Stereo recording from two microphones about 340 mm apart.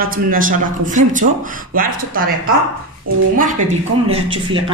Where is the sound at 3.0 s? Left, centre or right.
Right.